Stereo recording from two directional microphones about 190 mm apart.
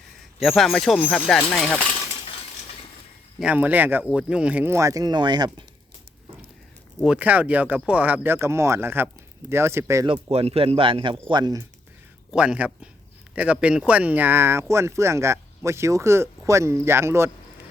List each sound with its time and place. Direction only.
0.3 s speech: centre (ahead or behind)
3.4 s speech: 10° right (ahead or behind)
7.0 s speech: 5° right (ahead or behind)
10.1 s speech: 30° right (ahead or behind)
12.3 s speech: 5° right (ahead or behind)